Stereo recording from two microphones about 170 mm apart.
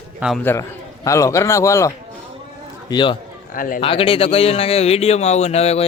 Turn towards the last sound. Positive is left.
turn(degrees=40)  # may be behind; listen again after turning